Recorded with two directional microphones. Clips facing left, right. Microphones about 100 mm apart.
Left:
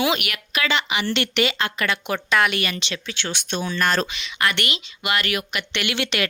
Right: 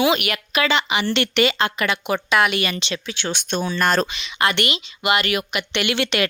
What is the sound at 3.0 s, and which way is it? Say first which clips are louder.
Speech: right 3 dB; 15° right (ahead or behind).